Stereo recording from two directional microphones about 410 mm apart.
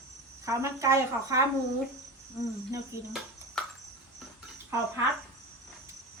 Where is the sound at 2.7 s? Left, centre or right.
Centre.